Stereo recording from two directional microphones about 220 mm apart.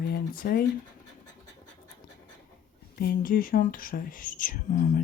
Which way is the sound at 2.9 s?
45° left (ahead or behind).